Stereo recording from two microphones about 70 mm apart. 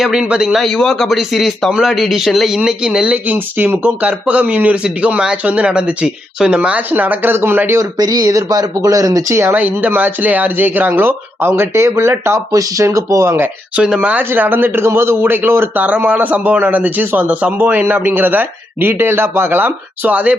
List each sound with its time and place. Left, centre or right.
0.0 s speech: centre
0.6 s a man's voice: centre; by 7.8 s right
7.8 s speech: right
9.3 s speech: right
9.6 s speech: right
12.5 s speech: right
13.7 s speech: centre; by 15.8 s right
15.8 s a man's voice: right